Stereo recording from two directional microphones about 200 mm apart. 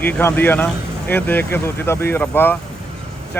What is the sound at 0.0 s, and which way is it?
Speech, 10° left (ahead or behind).